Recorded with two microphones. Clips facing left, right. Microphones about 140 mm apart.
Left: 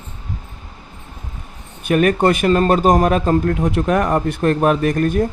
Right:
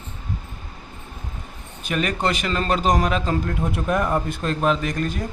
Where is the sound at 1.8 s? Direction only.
55° left (ahead or behind).